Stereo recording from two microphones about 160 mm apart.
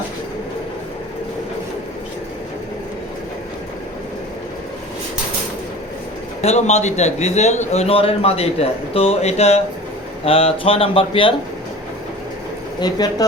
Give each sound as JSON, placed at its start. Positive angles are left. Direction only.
{"t": 6.4, "sound": "a man's voice", "side_deg": 40}
{"t": 12.8, "sound": "speech", "side_deg": 25}